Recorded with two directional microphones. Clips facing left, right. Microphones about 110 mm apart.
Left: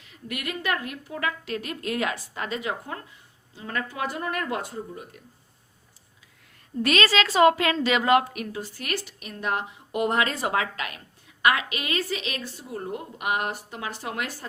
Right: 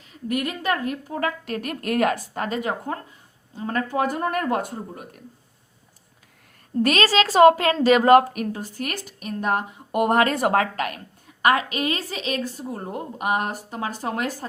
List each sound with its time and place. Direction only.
0.0 s a woman's voice: 35° right (ahead or behind)
6.7 s a woman's voice: 40° right (ahead or behind)